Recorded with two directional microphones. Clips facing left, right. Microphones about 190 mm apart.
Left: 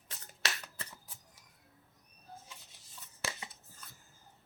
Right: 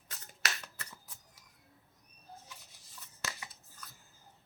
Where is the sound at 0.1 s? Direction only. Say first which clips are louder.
Even; 30° left (ahead or behind).